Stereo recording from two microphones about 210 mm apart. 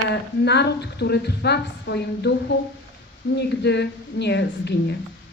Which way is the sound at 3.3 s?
55° left (ahead or behind).